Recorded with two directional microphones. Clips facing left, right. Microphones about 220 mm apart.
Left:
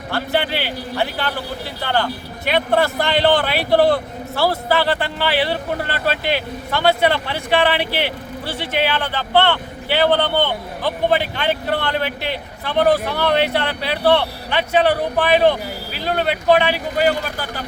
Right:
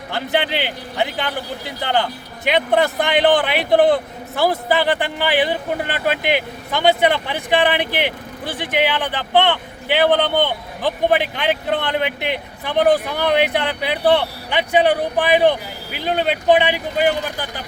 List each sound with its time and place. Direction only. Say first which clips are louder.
0.1 s a man's voice: even; 20° right (ahead or behind)